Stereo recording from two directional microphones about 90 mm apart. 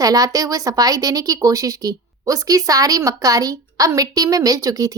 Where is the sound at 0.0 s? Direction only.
45° right (ahead or behind).